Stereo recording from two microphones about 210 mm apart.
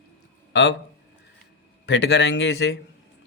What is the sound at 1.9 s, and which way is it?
Speech, 55° left (ahead or behind).